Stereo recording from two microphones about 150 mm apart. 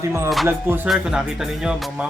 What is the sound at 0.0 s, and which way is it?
A man's voice, 20° right (ahead or behind).